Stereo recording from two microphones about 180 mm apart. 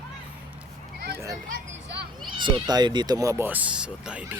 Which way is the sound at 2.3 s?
25° right (ahead or behind).